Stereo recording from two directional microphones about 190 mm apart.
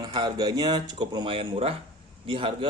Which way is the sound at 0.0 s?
20° right (ahead or behind).